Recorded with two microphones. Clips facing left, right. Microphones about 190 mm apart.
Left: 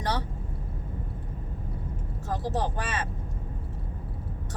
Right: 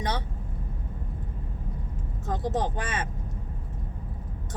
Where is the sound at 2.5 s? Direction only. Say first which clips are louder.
Right 1 dB; 20° right (ahead or behind).